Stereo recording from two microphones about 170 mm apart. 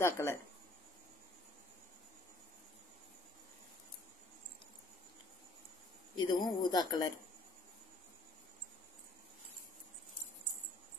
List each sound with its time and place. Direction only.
0.0 s speech: 15° left (ahead or behind)
6.1 s speech: 25° left (ahead or behind)